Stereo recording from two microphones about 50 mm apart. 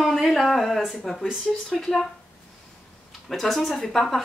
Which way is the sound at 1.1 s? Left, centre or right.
Centre.